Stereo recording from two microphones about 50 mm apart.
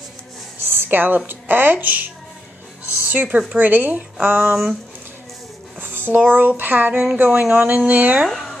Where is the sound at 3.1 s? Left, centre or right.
Right.